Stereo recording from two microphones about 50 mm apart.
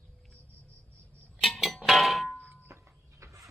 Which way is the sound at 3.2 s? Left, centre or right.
Right.